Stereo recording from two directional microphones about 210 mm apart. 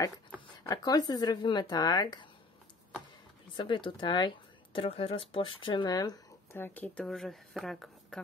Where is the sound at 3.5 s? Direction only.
20° left (ahead or behind).